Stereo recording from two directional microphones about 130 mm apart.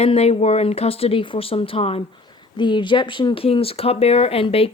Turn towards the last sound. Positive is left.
turn(degrees=45)  # may be behind; listen again after turning